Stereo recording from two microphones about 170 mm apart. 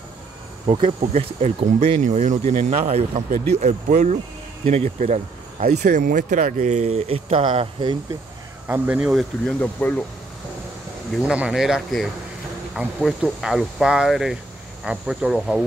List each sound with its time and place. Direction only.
0.7 s speech: 30° right (ahead or behind)
8.6 s speech: 10° right (ahead or behind)
9.6 s speech: 10° left (ahead or behind)
11.1 s speech: 5° right (ahead or behind)